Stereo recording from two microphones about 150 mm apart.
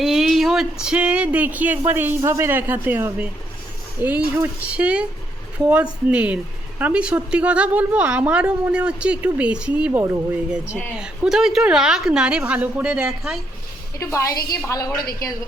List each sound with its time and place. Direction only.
0.0 s a woman's voice: centre (ahead or behind)
14.0 s a woman's voice: 20° left (ahead or behind)